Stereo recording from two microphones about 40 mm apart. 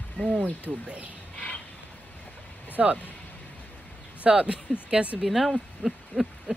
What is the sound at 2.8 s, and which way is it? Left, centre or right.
Speech, centre.